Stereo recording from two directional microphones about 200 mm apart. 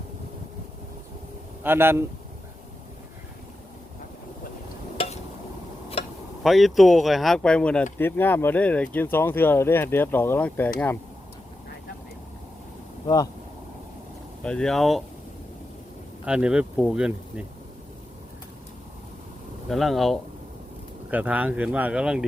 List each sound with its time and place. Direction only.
1.6 s speech: 10° right (ahead or behind)
6.0 s tick-tock: 30° left (ahead or behind)
6.4 s speech: centre (ahead or behind)
14.4 s speech: 5° left (ahead or behind)
16.2 s speech: 5° right (ahead or behind)
19.7 s speech: centre (ahead or behind)